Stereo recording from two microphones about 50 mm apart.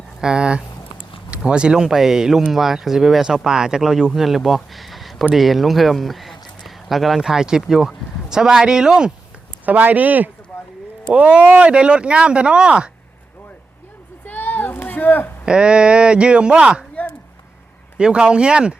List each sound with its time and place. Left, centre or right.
0.2 s speech: centre
7.2 s speech: centre
9.6 s speech: right
14.3 s a sound: left
15.4 s speech: centre
17.9 s speech: centre